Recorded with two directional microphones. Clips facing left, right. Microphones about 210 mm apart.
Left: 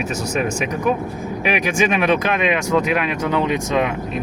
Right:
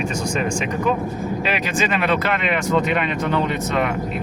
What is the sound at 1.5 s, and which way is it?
Speech, 15° left (ahead or behind).